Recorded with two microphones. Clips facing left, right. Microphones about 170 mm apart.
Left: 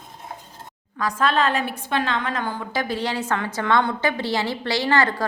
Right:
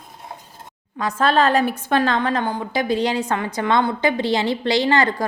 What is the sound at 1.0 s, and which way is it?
A woman's voice, 25° right (ahead or behind).